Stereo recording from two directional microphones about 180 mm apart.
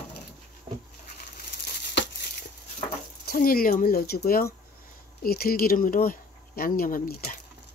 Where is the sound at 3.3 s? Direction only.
55° left (ahead or behind).